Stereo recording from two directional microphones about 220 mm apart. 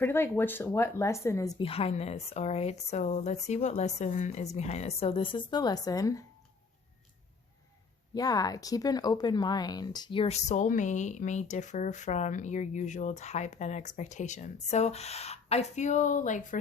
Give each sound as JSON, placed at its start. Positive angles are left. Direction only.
{"t": 0.0, "sound": "speech", "side_deg": 10}
{"t": 8.1, "sound": "speech", "side_deg": 15}